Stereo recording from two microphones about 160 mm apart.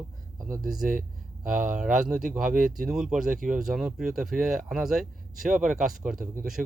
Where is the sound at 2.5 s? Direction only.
55° right (ahead or behind).